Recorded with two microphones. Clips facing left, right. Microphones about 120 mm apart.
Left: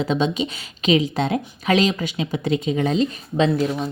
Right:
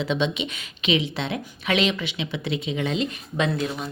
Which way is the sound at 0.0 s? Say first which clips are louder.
Left 4 dB; 40° left (ahead or behind).